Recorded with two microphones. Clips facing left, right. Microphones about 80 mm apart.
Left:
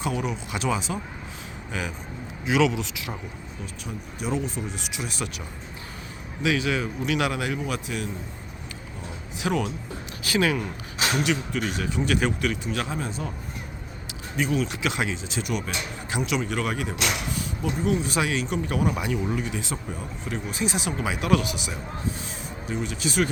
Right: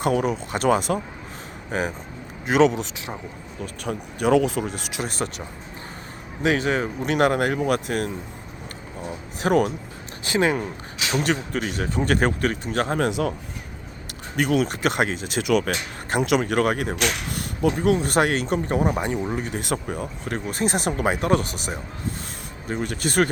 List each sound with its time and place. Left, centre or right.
0.0 s speech: right
2.6 s speech: right
3.8 s speech: right
6.4 s speech: right
9.4 s speech: right
10.2 s speech: right
11.2 s speech: right
13.0 s a man's voice: right
14.3 s speech: right
14.7 s speech: right
19.6 s speech: right